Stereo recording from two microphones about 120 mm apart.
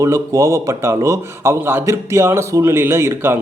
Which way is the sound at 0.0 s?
25° right (ahead or behind).